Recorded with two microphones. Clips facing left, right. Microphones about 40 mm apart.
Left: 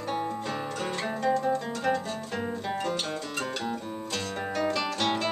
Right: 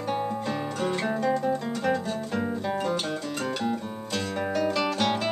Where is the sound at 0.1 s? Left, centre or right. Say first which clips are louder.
Right 2 dB; centre.